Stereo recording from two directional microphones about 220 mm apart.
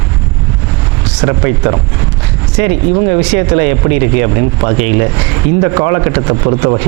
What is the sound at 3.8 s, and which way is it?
Speech, 20° right (ahead or behind).